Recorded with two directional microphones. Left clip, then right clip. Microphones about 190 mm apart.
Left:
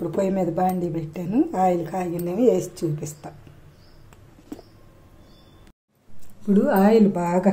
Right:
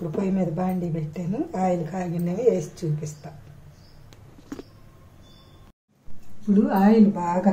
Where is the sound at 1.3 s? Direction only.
45° left (ahead or behind).